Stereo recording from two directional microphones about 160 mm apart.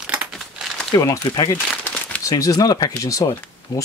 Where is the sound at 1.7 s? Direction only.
10° left (ahead or behind).